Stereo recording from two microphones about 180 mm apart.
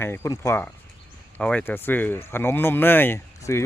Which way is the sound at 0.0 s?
15° left (ahead or behind).